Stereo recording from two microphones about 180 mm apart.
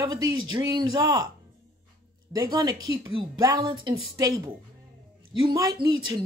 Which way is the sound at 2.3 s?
20° right (ahead or behind).